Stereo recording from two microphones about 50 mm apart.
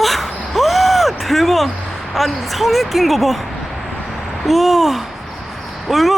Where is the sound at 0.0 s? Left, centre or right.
Centre.